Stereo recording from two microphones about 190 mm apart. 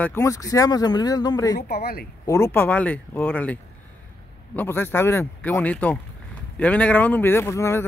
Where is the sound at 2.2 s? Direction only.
15° left (ahead or behind).